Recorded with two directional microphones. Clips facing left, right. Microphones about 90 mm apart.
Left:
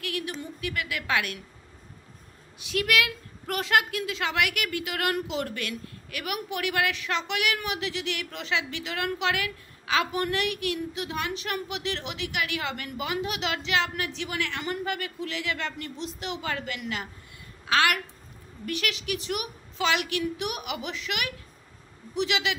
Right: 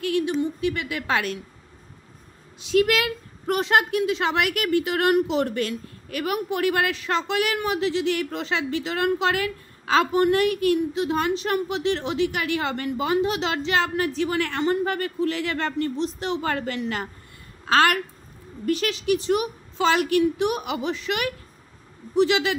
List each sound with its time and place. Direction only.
0.0 s a woman's voice: 30° right (ahead or behind)
2.6 s a woman's voice: 30° right (ahead or behind)